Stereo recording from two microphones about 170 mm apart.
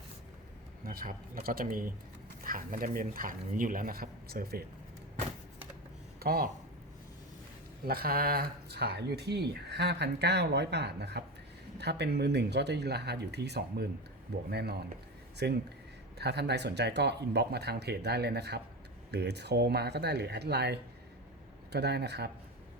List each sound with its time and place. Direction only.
0.9 s speech: 55° right (ahead or behind)
6.1 s speech: 60° right (ahead or behind)
7.9 s speech: 65° right (ahead or behind)